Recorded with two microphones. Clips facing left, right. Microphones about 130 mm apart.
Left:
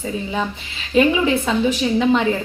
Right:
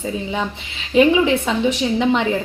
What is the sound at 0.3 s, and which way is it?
A woman's voice, 20° right (ahead or behind).